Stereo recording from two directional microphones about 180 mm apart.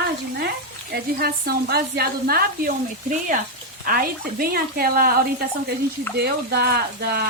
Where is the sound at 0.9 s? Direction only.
60° right (ahead or behind).